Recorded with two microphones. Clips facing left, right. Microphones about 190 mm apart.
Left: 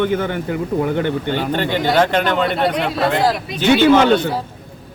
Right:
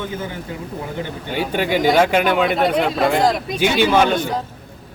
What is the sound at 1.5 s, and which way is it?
A man's voice, 10° right (ahead or behind).